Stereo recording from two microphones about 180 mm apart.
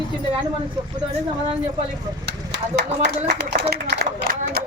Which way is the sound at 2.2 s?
70° right (ahead or behind).